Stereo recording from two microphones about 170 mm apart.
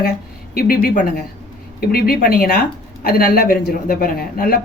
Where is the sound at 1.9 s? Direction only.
60° left (ahead or behind).